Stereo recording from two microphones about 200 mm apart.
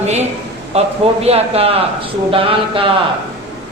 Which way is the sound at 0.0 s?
35° right (ahead or behind).